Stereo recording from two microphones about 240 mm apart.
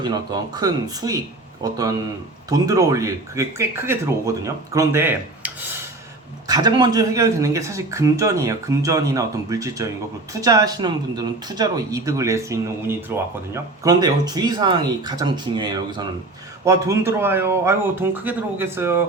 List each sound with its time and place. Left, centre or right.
0.0 s speech: centre